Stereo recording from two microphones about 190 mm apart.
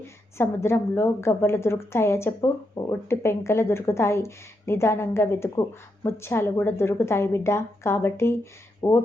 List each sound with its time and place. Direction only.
0.3 s a woman's voice: 15° left (ahead or behind)